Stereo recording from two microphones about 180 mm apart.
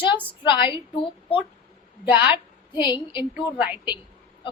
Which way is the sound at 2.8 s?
25° left (ahead or behind).